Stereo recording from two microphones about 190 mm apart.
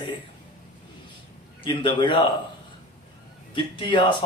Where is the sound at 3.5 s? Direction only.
25° left (ahead or behind).